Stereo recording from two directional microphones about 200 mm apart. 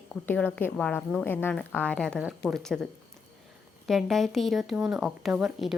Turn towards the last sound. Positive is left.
turn(degrees=-5)  # may be behind; listen again after turning